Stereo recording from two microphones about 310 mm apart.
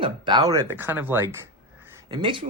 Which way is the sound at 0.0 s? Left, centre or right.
Centre.